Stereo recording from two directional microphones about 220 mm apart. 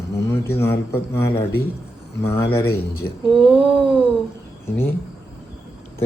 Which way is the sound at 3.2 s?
25° right (ahead or behind).